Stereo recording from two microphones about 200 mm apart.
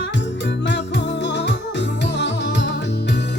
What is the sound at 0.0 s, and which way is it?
Music, 65° left (ahead or behind).